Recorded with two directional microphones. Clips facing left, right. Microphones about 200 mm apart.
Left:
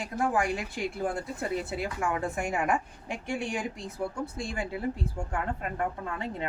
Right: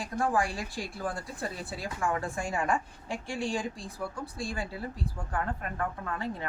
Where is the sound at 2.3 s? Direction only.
20° left (ahead or behind).